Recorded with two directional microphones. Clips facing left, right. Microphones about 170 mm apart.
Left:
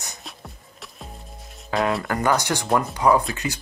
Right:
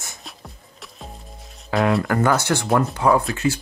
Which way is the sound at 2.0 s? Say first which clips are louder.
Right 3 dB; 15° left (ahead or behind).